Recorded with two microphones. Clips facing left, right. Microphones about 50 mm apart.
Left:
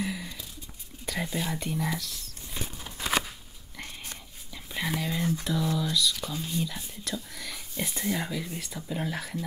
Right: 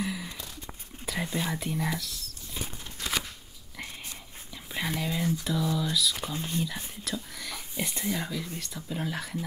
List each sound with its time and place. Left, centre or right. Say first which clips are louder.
0.0 s a sound: even; centre
1.0 s speech: even; centre
2.8 s walk: left 5 dB; centre
4.6 s speech: left 1 dB; centre
6.2 s speech: even; right
7.1 s speech: even; centre